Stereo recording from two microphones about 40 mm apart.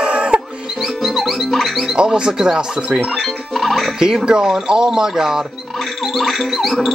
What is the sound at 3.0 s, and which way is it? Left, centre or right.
Speech, centre.